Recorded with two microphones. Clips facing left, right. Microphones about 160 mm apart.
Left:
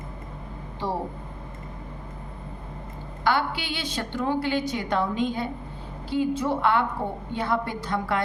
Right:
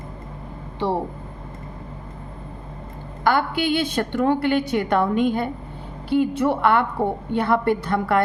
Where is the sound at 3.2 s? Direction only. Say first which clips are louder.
Right 5 dB; 50° right (ahead or behind).